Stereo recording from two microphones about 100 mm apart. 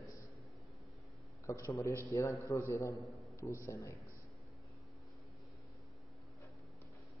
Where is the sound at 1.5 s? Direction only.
30° left (ahead or behind).